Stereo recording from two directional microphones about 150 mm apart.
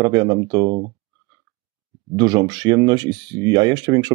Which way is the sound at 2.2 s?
30° right (ahead or behind).